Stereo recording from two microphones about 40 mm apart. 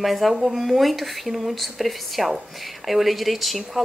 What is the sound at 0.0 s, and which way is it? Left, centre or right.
Speech, centre.